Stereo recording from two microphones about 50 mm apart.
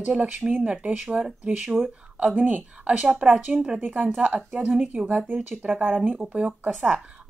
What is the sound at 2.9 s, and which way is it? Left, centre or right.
Speech, centre.